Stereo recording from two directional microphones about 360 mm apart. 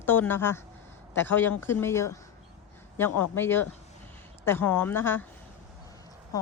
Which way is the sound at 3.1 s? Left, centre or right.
Left.